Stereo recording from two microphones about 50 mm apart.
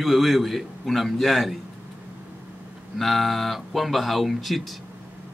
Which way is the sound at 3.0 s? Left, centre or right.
Centre.